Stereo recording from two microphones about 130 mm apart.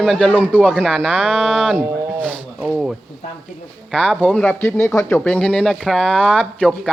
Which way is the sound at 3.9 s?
5° left (ahead or behind).